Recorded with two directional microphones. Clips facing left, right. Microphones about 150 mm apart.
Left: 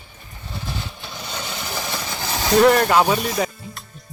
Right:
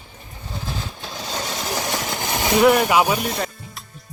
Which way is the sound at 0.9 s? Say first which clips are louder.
Right 3 dB; 40° right (ahead or behind).